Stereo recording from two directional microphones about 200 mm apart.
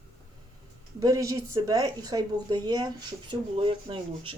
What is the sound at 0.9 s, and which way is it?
A woman's voice, 15° right (ahead or behind).